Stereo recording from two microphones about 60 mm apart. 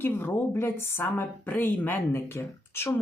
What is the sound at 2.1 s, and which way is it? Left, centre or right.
Speech, left.